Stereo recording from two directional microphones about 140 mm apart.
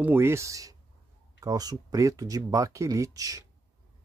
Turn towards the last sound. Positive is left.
turn(degrees=-25)  # may be behind; listen again after turning